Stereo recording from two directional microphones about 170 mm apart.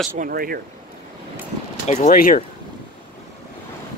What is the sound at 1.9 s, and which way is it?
Speech, 40° left (ahead or behind).